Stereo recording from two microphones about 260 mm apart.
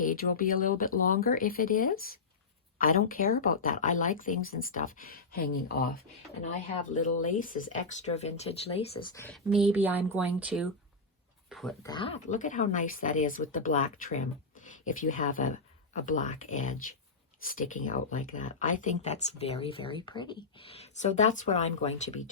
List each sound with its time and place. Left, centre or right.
0.0 s speech: left
6.8 s speech: left; by 11.7 s centre
11.8 s speech: centre